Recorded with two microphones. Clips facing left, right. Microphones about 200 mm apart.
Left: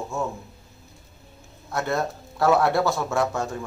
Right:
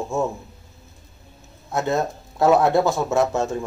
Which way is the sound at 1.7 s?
20° right (ahead or behind).